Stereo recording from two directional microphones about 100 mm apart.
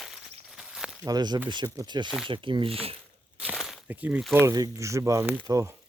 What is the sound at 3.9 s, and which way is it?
Speech, 15° right (ahead or behind).